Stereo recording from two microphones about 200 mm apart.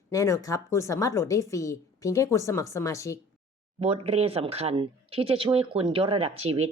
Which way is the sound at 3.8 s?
30° right (ahead or behind).